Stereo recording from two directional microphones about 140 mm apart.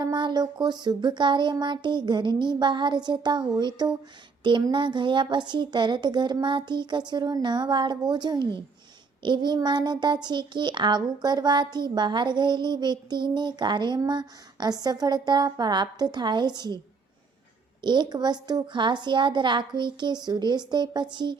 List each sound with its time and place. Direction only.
0.0 s a child's voice: 30° right (ahead or behind)
17.8 s a child's voice: 30° right (ahead or behind)